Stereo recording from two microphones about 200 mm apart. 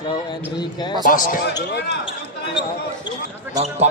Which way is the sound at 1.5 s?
60° left (ahead or behind).